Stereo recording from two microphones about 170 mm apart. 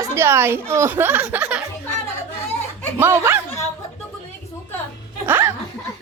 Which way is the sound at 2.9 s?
15° right (ahead or behind).